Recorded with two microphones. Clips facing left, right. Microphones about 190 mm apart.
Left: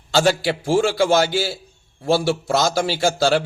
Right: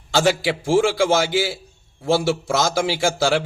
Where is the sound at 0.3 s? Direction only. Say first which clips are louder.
Even; 15° right (ahead or behind).